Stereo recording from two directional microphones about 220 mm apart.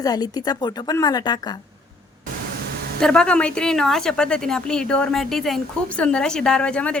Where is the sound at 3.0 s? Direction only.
5° left (ahead or behind).